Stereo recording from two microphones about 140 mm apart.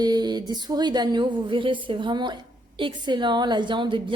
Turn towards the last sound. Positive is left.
turn(degrees=-35)  # may be behind; listen again after turning